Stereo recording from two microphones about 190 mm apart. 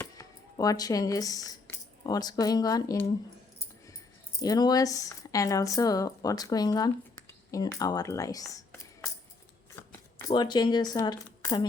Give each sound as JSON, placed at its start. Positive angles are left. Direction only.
{"t": 0.0, "sound": "speech", "side_deg": 20}
{"t": 4.4, "sound": "speech", "side_deg": 20}
{"t": 9.8, "sound": "shuffling cards", "side_deg": 10}
{"t": 10.2, "sound": "speech", "side_deg": 20}